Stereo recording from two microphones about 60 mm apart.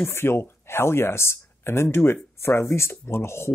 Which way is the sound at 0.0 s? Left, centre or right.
Left.